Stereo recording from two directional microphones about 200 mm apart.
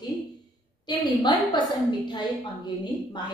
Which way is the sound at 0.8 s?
20° left (ahead or behind).